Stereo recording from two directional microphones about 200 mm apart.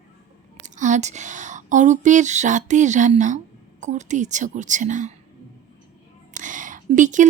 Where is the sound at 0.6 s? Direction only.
35° right (ahead or behind).